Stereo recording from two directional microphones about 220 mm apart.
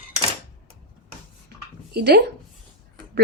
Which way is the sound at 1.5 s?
45° right (ahead or behind).